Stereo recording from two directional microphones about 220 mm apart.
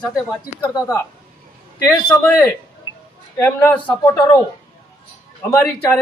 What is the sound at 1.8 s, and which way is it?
Speech, 10° left (ahead or behind).